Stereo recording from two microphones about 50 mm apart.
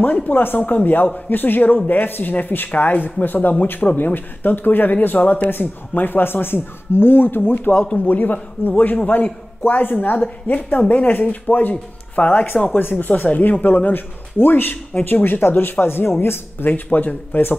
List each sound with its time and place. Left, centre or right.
0.0 s a man's voice: left
7.7 s speech: left
8.1 s a man's voice: left